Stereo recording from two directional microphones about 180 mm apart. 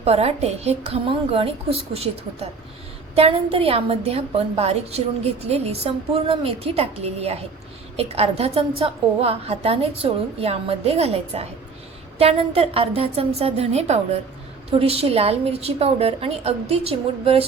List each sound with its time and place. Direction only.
0.0 s a woman's voice: 35° right (ahead or behind)